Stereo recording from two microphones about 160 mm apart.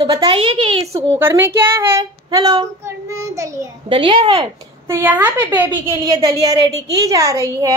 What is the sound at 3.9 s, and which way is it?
Speech, 35° right (ahead or behind).